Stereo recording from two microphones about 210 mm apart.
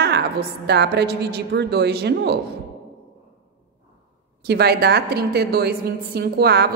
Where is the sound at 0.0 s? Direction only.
50° right (ahead or behind).